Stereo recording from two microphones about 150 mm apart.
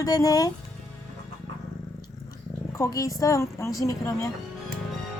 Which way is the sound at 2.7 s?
20° left (ahead or behind).